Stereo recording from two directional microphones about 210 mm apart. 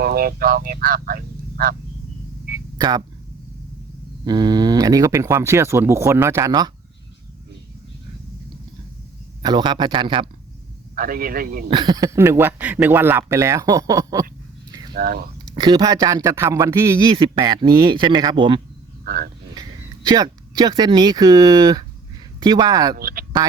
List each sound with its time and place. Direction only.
0.0 s speech: 45° right (ahead or behind)
2.7 s speech: 15° right (ahead or behind)
4.3 s speech: 20° right (ahead or behind)
9.4 s a man's voice: 20° right (ahead or behind)
10.9 s a man's voice: 45° right (ahead or behind)
11.7 s speech: 20° right (ahead or behind)
14.7 s a sound: 20° right (ahead or behind)
14.9 s a man's voice: 45° right (ahead or behind)
15.5 s a man's voice: 20° right (ahead or behind)
19.0 s speech: 45° right (ahead or behind)
19.5 s a man's voice: 20° right (ahead or behind)
23.0 s a man's voice: 45° right (ahead or behind)